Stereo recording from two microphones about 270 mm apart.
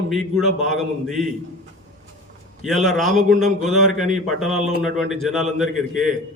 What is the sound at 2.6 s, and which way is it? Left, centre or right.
A man's voice, centre.